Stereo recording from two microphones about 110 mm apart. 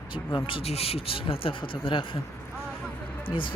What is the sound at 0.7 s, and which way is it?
Speech, 65° left (ahead or behind).